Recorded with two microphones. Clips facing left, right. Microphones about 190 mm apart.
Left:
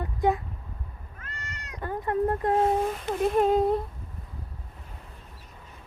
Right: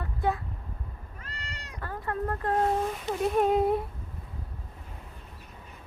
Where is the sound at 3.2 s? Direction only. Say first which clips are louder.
Left 2 dB; centre (ahead or behind).